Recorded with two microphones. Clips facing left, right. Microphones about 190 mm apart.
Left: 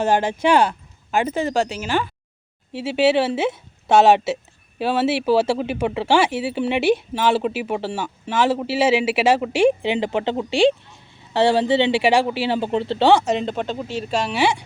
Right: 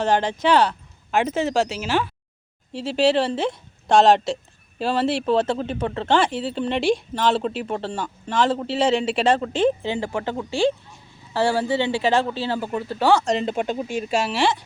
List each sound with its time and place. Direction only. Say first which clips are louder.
0.0 s speech: left 2 dB; 10° left (ahead or behind); by 13.2 s 25° left (ahead or behind)
13.2 s speech: left 1 dB; centre (ahead or behind)
13.5 s speech: right 1 dB; 15° right (ahead or behind)